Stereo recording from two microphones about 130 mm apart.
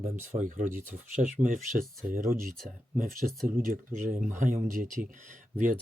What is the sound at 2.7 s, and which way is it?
Speech, 90° right.